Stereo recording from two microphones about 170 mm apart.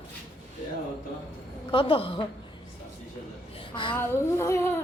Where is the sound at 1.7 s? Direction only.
30° left (ahead or behind).